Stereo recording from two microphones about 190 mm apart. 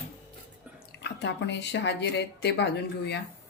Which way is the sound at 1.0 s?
65° left (ahead or behind).